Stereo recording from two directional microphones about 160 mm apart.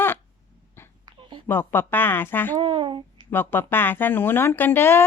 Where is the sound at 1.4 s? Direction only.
15° left (ahead or behind).